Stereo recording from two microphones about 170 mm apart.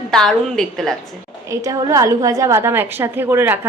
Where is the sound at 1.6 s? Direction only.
20° right (ahead or behind).